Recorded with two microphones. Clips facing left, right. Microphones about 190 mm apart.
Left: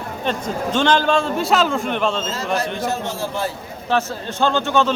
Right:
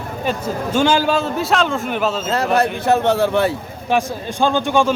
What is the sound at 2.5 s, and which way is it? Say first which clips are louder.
Speech: right 6 dB; 60° right (ahead or behind).